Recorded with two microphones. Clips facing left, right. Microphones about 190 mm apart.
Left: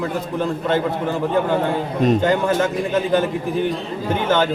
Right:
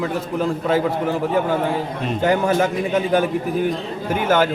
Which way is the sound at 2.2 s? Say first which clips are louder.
Even; 10° right (ahead or behind).